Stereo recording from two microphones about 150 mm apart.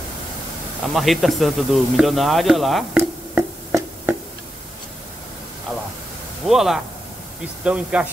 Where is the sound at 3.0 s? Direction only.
15° right (ahead or behind).